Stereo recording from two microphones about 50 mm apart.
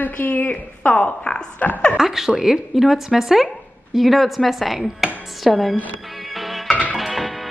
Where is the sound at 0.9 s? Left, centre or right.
Left.